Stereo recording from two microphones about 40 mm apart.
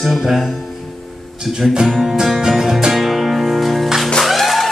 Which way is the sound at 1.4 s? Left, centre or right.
Centre.